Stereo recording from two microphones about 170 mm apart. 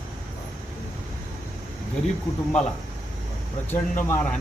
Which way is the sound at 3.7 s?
15° left (ahead or behind).